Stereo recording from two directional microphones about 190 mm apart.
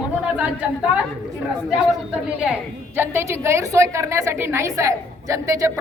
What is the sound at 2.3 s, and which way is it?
A woman's voice, 5° right (ahead or behind).